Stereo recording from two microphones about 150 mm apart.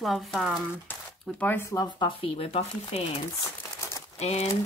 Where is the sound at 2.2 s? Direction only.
40° left (ahead or behind).